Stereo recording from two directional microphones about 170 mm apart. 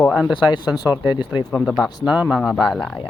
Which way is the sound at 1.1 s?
25° left (ahead or behind).